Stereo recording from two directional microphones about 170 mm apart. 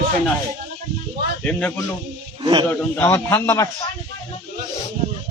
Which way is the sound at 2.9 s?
10° left (ahead or behind).